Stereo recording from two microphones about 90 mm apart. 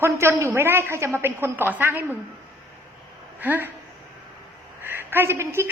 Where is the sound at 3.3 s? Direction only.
20° right (ahead or behind).